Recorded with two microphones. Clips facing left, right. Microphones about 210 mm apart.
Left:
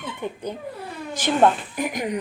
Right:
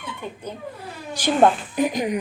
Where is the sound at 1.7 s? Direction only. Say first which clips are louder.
Right 4 dB; 20° right (ahead or behind).